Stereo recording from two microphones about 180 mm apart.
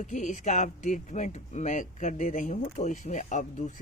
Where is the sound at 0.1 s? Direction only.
45° left (ahead or behind).